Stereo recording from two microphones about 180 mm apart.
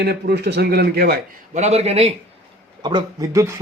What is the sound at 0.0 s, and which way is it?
A man's voice, 65° right (ahead or behind).